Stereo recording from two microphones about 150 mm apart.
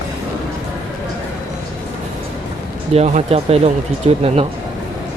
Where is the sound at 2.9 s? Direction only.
50° right (ahead or behind).